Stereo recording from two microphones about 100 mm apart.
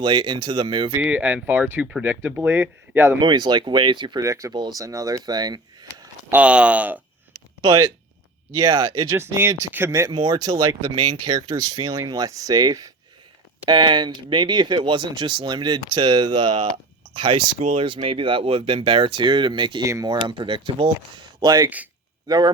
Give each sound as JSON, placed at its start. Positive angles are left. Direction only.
{"t": 0.0, "sound": "speech", "side_deg": -50}
{"t": 1.0, "sound": "speech", "side_deg": -15}
{"t": 3.2, "sound": "speech", "side_deg": -50}
{"t": 4.2, "sound": "speech", "side_deg": -30}
{"t": 4.5, "sound": "speech", "side_deg": -45}
{"t": 4.8, "sound": "speech", "side_deg": -35}
{"t": 6.3, "sound": "speech", "side_deg": -10}
{"t": 7.6, "sound": "speech", "side_deg": -35}
{"t": 9.7, "sound": "speech", "side_deg": -25}
{"t": 10.1, "sound": "speech", "side_deg": -45}
{"t": 13.7, "sound": "speech", "side_deg": -50}
{"t": 19.8, "sound": "speech", "side_deg": -30}
{"t": 20.1, "sound": "speech", "side_deg": -50}
{"t": 21.4, "sound": "speech", "side_deg": -45}